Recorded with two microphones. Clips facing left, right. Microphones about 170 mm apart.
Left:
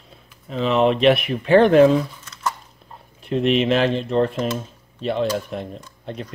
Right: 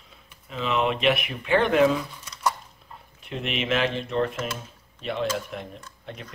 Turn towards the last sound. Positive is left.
turn(degrees=35)  # may be behind; listen again after turning